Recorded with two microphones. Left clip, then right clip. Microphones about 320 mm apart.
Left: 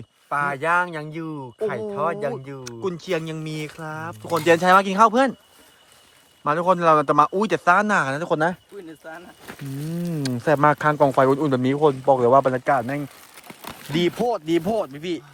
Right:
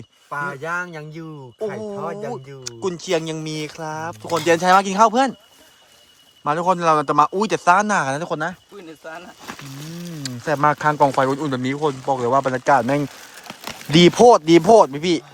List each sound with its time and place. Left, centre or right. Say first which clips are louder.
0.3 s speech: left 4 dB; centre
2.6 s speech: right 3 dB; centre
6.4 s speech: even; centre
10.2 s speech: even; centre
13.7 s speech: right 9 dB; right